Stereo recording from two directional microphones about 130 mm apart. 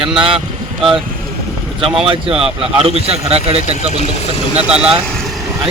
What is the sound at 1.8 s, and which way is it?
A man's voice, 45° right (ahead or behind).